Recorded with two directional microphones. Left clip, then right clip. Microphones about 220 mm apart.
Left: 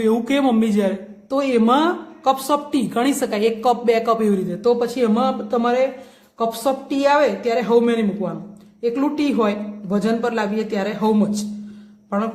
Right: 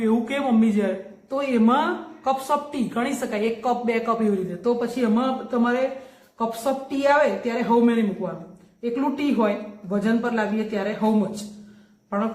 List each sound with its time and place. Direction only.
0.0 s a man's voice: 50° left (ahead or behind)